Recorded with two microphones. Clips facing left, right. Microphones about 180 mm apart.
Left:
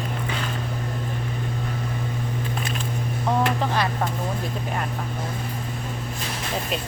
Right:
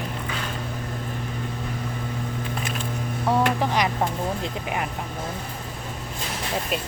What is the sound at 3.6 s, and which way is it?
Vehicle, 15° right (ahead or behind).